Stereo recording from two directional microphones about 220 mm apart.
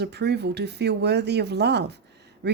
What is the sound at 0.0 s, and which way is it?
Speech, 50° right (ahead or behind).